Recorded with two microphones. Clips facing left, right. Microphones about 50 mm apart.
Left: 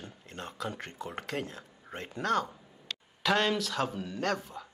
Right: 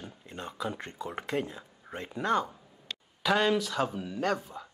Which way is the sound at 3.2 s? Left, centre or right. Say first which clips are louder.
Right 2 dB; centre.